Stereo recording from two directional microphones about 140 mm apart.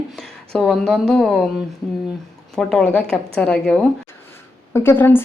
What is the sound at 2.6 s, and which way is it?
A woman's voice, 5° left (ahead or behind).